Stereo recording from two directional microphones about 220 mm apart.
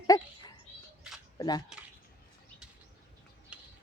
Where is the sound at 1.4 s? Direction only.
20° left (ahead or behind).